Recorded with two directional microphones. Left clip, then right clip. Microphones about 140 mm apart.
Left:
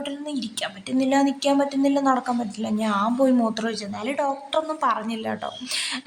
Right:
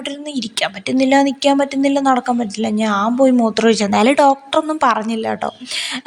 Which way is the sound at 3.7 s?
75° right (ahead or behind).